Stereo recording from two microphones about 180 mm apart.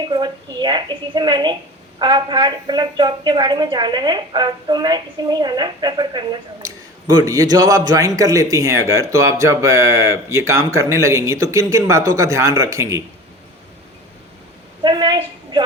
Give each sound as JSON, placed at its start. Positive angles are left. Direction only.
{"t": 0.1, "sound": "a woman's voice", "side_deg": -25}
{"t": 14.8, "sound": "a woman's voice", "side_deg": -25}